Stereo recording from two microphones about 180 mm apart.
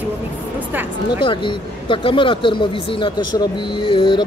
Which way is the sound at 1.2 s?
25° left (ahead or behind).